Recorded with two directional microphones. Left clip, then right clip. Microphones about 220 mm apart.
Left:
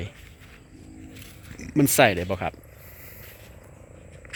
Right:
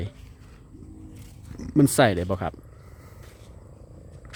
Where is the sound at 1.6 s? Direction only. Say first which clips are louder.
Left 1 dB; 20° right (ahead or behind).